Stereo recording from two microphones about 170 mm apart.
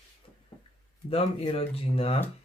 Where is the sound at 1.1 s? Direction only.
35° left (ahead or behind).